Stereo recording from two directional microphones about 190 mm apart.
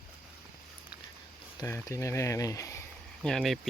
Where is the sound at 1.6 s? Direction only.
15° left (ahead or behind).